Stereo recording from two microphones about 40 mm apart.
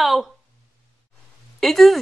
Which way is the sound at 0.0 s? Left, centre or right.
Centre.